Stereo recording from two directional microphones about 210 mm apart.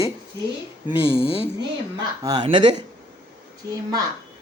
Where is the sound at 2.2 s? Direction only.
20° right (ahead or behind).